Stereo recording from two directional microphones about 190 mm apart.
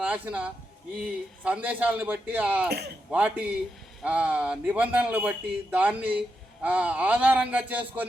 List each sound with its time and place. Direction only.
0.0 s a man's voice: 5° right (ahead or behind)
2.6 s speech: 55° right (ahead or behind)
3.1 s a man's voice: 5° right (ahead or behind)